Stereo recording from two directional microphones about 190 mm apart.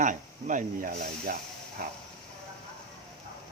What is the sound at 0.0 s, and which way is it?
Speech, 40° right (ahead or behind).